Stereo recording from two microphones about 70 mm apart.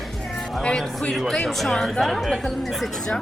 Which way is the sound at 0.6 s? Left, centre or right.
Centre.